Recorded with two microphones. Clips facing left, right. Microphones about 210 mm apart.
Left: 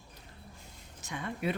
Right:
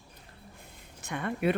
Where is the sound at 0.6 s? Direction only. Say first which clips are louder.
Right 2 dB; 60° right (ahead or behind).